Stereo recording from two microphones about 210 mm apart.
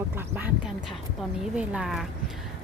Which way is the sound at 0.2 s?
10° right (ahead or behind).